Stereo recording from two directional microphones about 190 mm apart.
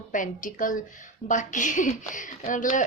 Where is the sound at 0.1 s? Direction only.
45° left (ahead or behind).